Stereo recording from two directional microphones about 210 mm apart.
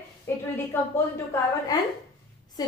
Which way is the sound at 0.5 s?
10° left (ahead or behind).